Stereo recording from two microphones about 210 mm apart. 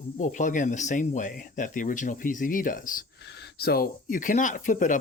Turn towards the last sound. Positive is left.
turn(degrees=40)  # may be behind; listen again after turning